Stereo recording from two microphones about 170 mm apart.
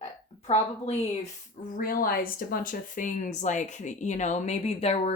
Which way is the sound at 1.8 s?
60° left (ahead or behind).